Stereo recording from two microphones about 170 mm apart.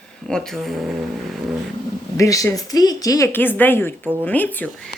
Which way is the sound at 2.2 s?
20° left (ahead or behind).